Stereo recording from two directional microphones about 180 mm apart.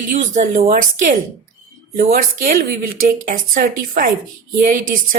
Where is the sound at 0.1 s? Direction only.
45° right (ahead or behind).